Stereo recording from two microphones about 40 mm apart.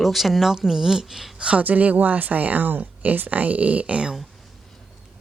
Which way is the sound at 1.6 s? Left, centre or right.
Right.